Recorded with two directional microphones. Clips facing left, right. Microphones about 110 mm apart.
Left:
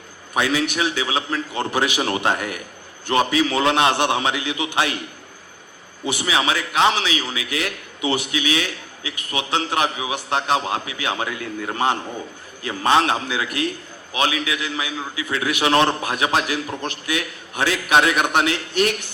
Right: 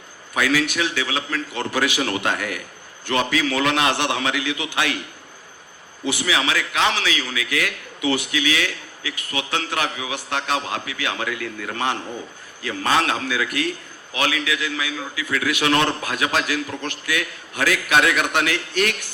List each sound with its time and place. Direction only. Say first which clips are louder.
0.3 s a man's voice: even; 25° left (ahead or behind)
6.2 s a man's voice: left 2 dB; 25° left (ahead or behind)